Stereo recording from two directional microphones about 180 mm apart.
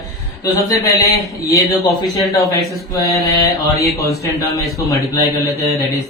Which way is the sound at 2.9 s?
20° left (ahead or behind).